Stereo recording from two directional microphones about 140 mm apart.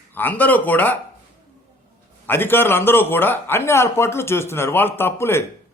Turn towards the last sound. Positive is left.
turn(degrees=15)  # may be behind; listen again after turning